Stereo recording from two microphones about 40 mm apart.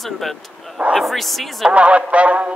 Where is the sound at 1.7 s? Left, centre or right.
Right.